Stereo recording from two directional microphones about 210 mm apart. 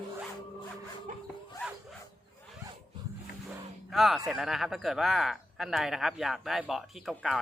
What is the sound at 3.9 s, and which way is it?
Speech, centre (ahead or behind).